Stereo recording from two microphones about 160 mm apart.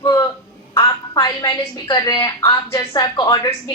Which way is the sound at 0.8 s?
25° left (ahead or behind).